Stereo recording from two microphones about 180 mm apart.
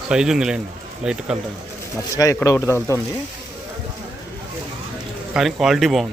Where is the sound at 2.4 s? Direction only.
15° left (ahead or behind).